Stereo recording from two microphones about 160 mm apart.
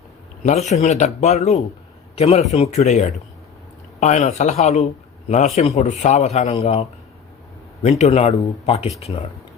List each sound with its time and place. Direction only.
0.4 s a man's voice: 45° left (ahead or behind)